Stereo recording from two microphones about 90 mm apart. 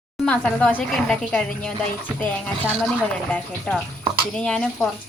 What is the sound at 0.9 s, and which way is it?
Speech, 5° left (ahead or behind).